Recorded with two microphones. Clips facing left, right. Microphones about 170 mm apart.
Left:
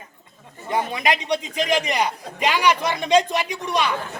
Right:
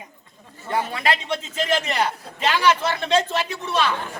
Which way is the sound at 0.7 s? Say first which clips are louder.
Left 1 dB; 15° left (ahead or behind).